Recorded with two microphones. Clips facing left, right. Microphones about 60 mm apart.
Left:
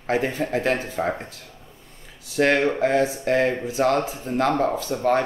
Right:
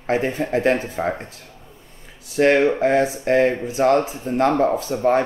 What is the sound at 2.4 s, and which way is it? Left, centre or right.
Speech, centre.